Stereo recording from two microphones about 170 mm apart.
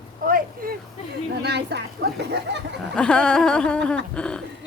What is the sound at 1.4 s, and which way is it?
Speech, 75° right (ahead or behind).